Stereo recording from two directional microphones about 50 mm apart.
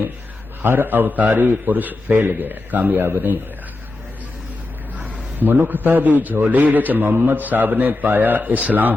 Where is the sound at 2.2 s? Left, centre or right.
Right.